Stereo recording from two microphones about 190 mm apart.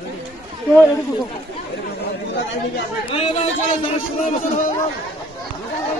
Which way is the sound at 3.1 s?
30° left (ahead or behind).